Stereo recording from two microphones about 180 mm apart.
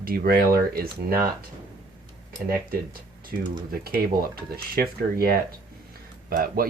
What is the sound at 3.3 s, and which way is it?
Speech, 50° right (ahead or behind).